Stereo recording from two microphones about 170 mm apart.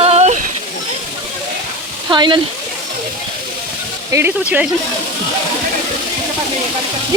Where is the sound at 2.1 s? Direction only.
25° right (ahead or behind).